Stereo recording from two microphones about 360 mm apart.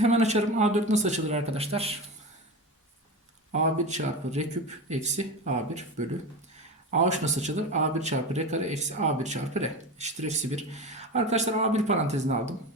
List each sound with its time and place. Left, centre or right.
0.0 s speech: centre
3.5 s speech: centre
6.9 s speech: centre